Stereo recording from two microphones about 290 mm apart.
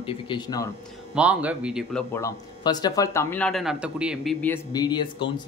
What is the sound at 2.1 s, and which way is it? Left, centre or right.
Speech, centre.